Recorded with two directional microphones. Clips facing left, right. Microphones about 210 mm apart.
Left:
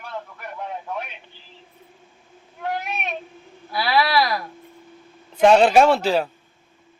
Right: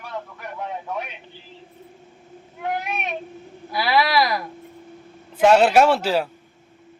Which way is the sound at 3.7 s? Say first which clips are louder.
Even; 20° right (ahead or behind).